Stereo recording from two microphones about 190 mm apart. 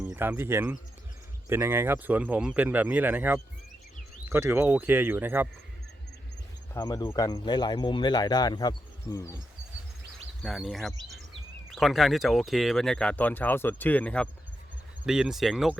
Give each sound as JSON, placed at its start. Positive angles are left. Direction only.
{"t": 0.0, "sound": "speech", "side_deg": -10}
{"t": 6.7, "sound": "speech", "side_deg": 20}
{"t": 10.4, "sound": "speech", "side_deg": 0}